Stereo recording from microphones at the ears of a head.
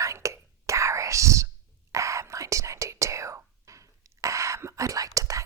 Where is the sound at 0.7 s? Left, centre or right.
Right.